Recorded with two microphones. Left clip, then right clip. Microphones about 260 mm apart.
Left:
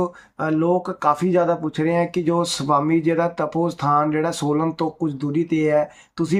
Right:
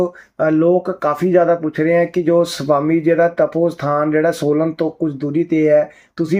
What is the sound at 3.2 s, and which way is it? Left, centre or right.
Speech, left.